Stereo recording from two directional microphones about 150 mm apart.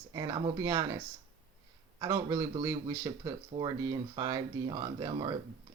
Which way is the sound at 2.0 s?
25° right (ahead or behind).